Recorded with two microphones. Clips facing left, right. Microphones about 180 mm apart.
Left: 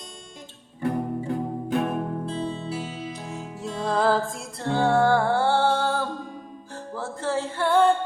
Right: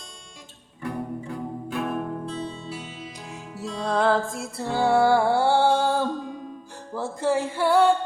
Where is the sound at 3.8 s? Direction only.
Centre (ahead or behind).